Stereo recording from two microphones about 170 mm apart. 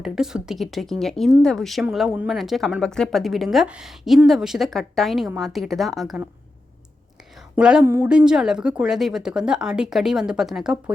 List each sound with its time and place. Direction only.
0.0 s speech: 5° right (ahead or behind)
7.5 s speech: 5° right (ahead or behind)
7.9 s speech: 15° right (ahead or behind)
8.1 s speech: 5° right (ahead or behind)